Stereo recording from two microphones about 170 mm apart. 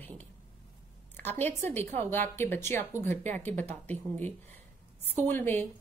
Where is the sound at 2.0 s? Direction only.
10° left (ahead or behind).